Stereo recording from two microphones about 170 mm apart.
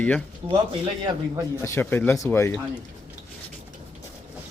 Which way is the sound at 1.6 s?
15° left (ahead or behind).